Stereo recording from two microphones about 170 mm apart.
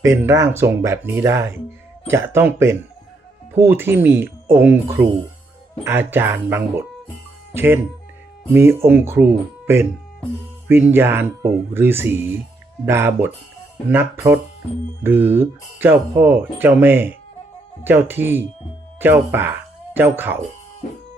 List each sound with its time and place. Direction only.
0.0 s speech: 15° right (ahead or behind)